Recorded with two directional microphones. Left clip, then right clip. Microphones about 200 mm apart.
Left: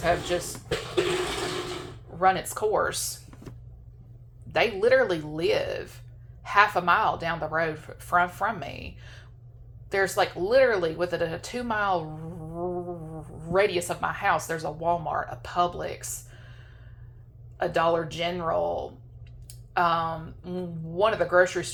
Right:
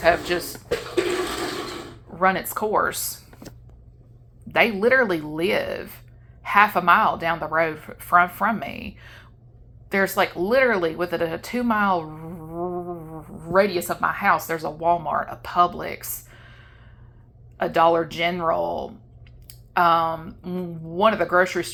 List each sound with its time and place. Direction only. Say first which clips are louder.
2.1 s a woman's voice: right 2 dB; 40° right (ahead or behind)
4.4 s a woman's voice: right 4 dB; 35° right (ahead or behind)
13.5 s a woman's voice: right 4 dB; 25° right (ahead or behind)